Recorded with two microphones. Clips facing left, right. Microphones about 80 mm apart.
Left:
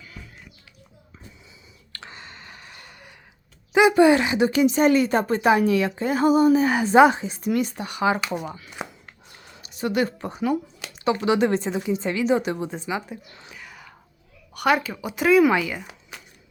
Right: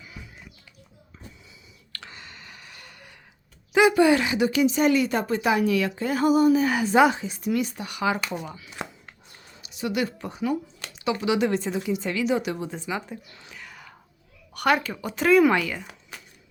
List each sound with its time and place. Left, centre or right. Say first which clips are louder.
0.0 s a sound: even; centre
1.9 s clicking: left 2 dB; left
3.7 s a woman's voice: left 2 dB; left
7.4 s a woman's voice: left 2 dB; left
8.3 s speech: left 4 dB; centre
8.8 s a sound: left 1 dB; centre
9.6 s speech: left 3 dB; left
10.9 s a sound: left 4 dB; left
11.3 s speech: left 2 dB; left; by 13.6 s centre
13.6 s whispering: right 1 dB; centre
14.5 s a sound: left 1 dB; centre
14.8 s speech: left 1 dB; centre